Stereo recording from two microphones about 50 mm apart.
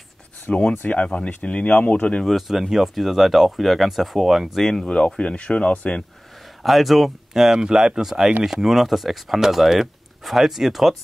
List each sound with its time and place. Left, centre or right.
0.5 s speech: left
2.2 s speech: centre
4.6 s speech: centre
4.8 s speech: left
6.6 s speech: centre